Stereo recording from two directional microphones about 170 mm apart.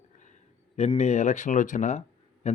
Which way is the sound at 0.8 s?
40° left (ahead or behind).